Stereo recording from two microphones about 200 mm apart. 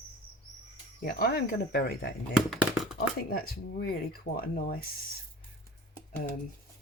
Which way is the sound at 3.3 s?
50° left (ahead or behind).